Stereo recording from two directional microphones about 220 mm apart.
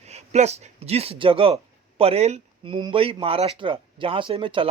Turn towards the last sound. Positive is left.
turn(degrees=-25)  # may be behind; listen again after turning